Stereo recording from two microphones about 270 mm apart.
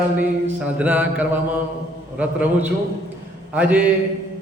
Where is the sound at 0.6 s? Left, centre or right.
Centre.